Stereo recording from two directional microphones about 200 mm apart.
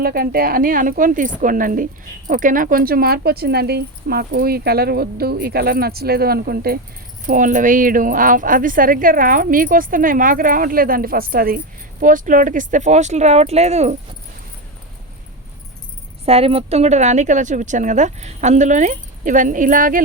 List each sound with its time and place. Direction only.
0.0 s speech: 50° right (ahead or behind); by 13.9 s 35° right (ahead or behind)
16.2 s speech: 30° right (ahead or behind)